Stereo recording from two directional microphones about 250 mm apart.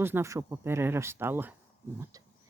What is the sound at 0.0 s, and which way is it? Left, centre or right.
Speech, centre.